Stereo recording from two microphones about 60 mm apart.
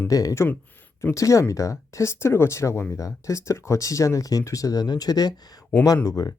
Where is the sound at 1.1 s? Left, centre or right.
Left.